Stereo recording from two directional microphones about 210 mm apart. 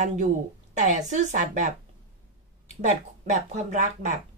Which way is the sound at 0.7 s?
35° right (ahead or behind).